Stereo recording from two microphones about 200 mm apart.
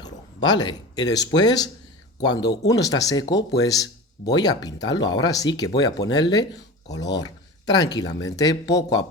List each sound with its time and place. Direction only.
0.0 s speech: 20° left (ahead or behind)